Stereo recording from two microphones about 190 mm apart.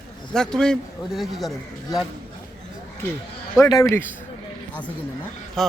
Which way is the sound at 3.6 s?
20° left (ahead or behind).